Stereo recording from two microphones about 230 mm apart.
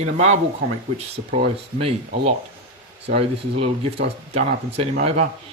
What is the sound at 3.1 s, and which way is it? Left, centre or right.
Speech, right.